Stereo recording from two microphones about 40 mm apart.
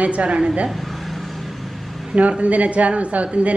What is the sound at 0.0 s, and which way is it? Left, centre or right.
Speech, right.